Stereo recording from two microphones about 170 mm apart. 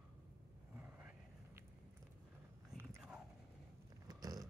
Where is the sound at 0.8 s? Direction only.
10° right (ahead or behind).